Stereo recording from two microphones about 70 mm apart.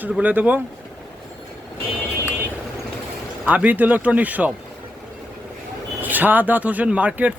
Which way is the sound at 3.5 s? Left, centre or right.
Right.